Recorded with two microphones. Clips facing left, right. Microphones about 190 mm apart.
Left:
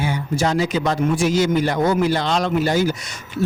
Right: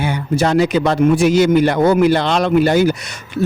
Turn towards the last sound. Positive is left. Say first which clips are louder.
# right 3 dB
turn(degrees=-65)  # may be behind; listen again after turning